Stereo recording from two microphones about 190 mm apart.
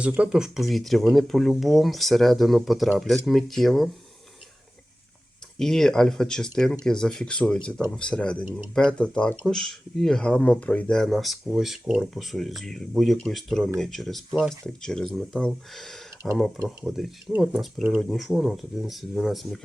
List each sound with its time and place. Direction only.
0.0 s speech: 5° right (ahead or behind)
5.5 s speech: centre (ahead or behind)